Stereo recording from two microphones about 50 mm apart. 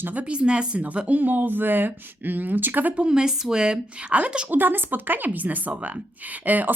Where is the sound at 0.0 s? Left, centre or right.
Right.